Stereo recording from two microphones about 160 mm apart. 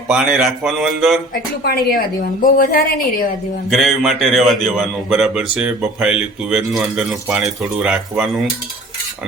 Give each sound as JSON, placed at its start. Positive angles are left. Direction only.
{"t": 0.1, "sound": "a man's voice", "side_deg": -5}
{"t": 1.3, "sound": "a woman's voice", "side_deg": 65}
{"t": 3.7, "sound": "a man's voice", "side_deg": 0}